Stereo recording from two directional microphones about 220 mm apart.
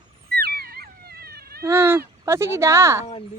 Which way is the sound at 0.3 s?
45° right (ahead or behind).